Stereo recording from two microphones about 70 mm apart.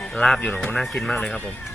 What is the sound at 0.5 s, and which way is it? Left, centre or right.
Speech, left.